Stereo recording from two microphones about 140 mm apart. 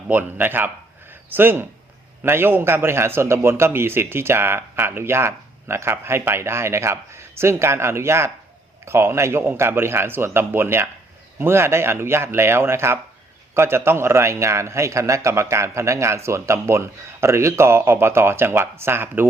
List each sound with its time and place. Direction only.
0.1 s a man's voice: 15° right (ahead or behind)